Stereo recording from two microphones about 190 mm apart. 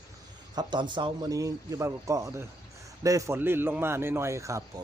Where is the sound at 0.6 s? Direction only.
25° right (ahead or behind).